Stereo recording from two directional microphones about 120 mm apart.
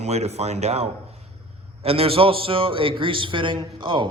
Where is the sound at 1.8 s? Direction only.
55° right (ahead or behind).